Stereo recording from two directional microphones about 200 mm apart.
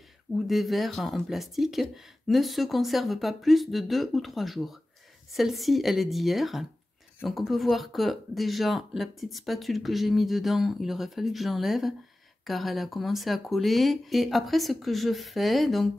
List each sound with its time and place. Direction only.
0.5 s speech: centre (ahead or behind)